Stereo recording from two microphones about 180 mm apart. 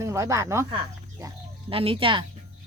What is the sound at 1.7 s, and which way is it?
Speech, 30° right (ahead or behind).